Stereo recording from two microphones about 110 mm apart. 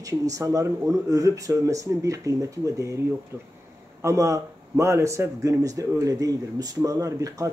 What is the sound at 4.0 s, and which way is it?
Speech, 30° right (ahead or behind).